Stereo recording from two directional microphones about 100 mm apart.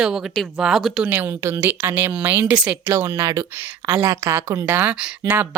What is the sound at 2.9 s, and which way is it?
Speech, 30° right (ahead or behind).